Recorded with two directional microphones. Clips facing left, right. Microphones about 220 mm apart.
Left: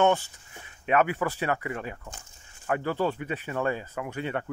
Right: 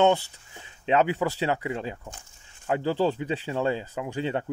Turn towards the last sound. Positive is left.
turn(degrees=-25)  # may be behind; listen again after turning